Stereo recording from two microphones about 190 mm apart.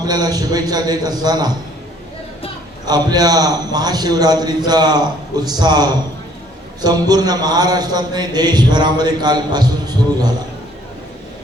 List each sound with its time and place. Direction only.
0.0 s a man's voice: 20° right (ahead or behind)
2.8 s a man's voice: 20° right (ahead or behind)